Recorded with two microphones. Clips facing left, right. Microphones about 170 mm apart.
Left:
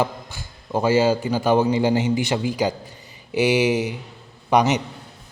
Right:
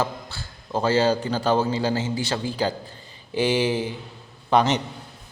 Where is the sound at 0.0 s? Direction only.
15° left (ahead or behind).